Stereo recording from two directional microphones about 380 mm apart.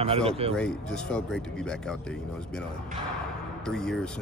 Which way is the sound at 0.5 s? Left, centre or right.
Centre.